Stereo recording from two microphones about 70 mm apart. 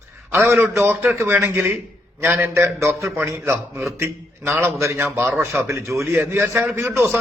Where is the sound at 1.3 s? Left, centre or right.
Right.